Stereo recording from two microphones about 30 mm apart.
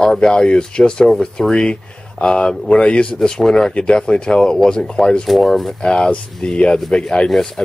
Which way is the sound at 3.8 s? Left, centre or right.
Left.